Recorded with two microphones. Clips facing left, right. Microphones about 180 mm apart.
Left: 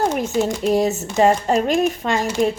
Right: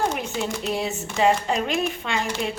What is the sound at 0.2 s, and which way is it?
A woman's voice, 40° left (ahead or behind).